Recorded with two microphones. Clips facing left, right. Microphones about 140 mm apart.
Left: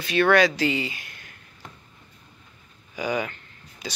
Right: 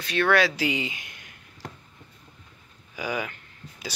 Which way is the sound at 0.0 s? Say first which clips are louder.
Left 3 dB; centre (ahead or behind).